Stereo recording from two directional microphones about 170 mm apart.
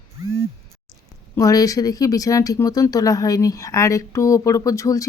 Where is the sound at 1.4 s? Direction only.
20° left (ahead or behind).